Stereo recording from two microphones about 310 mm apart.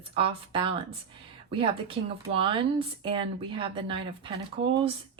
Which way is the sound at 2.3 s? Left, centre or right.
Centre.